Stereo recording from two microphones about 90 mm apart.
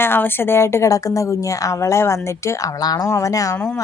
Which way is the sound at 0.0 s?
25° left (ahead or behind).